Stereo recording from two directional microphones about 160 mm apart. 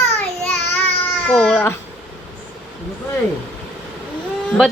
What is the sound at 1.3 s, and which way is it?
Speech, 10° left (ahead or behind).